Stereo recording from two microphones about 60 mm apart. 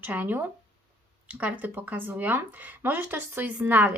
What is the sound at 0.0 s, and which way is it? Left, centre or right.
Speech, right.